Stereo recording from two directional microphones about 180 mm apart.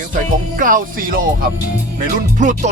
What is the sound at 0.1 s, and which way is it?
Music, 50° right (ahead or behind).